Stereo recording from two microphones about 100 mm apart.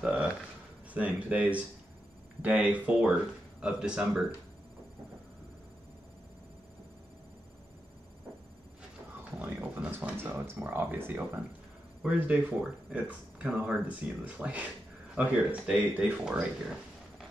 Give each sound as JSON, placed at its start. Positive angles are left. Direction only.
{"t": 0.0, "sound": "speech", "side_deg": -10}
{"t": 9.4, "sound": "a sound", "side_deg": -15}
{"t": 10.2, "sound": "speech", "side_deg": -20}